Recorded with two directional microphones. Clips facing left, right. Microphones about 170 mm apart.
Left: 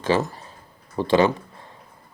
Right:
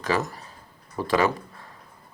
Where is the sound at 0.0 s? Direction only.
30° left (ahead or behind).